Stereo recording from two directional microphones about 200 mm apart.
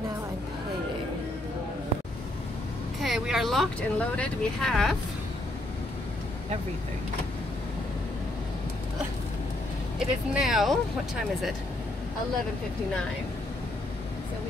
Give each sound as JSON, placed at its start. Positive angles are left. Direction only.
{"t": 3.0, "sound": "speech", "side_deg": 0}
{"t": 9.9, "sound": "speech", "side_deg": 0}